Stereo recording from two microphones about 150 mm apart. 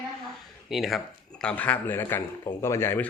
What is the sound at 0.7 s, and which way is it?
Speech, centre (ahead or behind).